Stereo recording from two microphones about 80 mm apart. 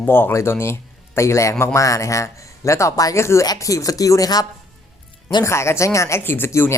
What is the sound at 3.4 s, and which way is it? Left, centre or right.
Speech, left.